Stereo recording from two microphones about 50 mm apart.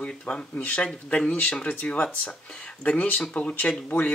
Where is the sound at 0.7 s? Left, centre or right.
Centre.